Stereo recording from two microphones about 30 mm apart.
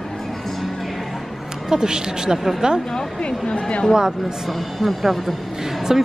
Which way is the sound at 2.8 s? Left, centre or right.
Centre.